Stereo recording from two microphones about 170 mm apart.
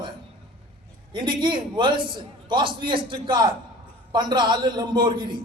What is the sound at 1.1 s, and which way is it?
A man's voice, 30° right (ahead or behind).